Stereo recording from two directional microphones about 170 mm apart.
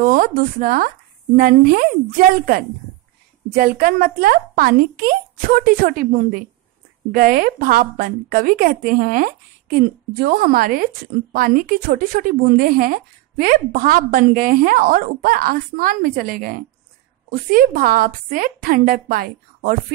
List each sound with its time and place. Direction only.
0.0 s speech: 55° right (ahead or behind)